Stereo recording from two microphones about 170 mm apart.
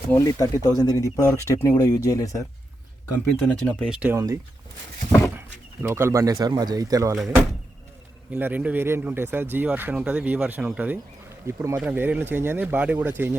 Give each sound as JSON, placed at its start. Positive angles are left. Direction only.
{"t": 0.1, "sound": "speech", "side_deg": 20}
{"t": 3.4, "sound": "speech", "side_deg": 10}
{"t": 3.8, "sound": "speech", "side_deg": -5}
{"t": 4.1, "sound": "speech", "side_deg": -20}
{"t": 5.8, "sound": "speech", "side_deg": -15}
{"t": 8.3, "sound": "speech", "side_deg": -10}